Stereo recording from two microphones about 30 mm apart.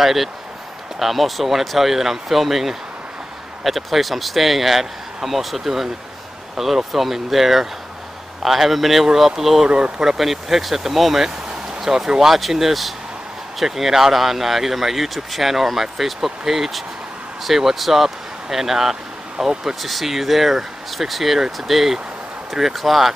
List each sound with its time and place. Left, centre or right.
0.0 s speech: centre
9.7 s speech: right
10.1 s speech: centre
11.2 s a sound: centre
12.2 s speech: centre